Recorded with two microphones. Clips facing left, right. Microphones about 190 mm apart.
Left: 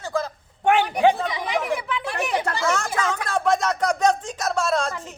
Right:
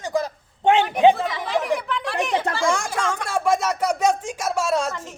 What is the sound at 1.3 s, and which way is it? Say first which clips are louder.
Chatter: right 1 dB; 15° left (ahead or behind).